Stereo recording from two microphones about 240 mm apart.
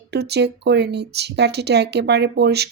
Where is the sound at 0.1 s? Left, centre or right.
Right.